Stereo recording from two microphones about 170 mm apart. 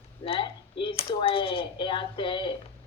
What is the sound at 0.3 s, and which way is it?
A woman's voice, 30° left (ahead or behind).